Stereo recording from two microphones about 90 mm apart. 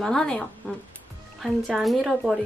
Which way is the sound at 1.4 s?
Centre (ahead or behind).